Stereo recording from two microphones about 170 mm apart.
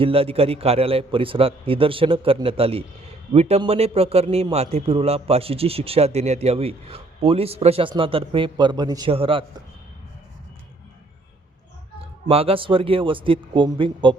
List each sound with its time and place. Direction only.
0.0 s a man's voice: 35° right (ahead or behind)
12.3 s a man's voice: 35° right (ahead or behind)